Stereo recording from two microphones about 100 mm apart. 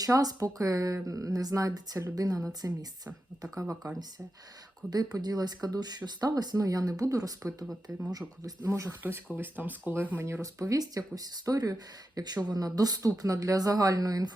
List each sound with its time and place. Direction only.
0.0 s speech: 40° right (ahead or behind)
4.9 s speech: 40° right (ahead or behind)